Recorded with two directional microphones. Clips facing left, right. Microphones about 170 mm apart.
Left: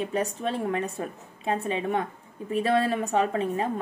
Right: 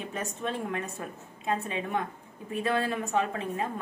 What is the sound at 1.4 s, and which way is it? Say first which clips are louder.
A woman's voice: left 4 dB; 30° left (ahead or behind).